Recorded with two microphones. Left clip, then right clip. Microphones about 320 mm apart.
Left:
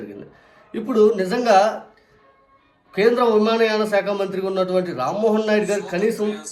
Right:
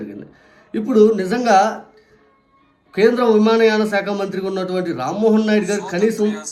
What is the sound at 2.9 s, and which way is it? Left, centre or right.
A man's voice, centre.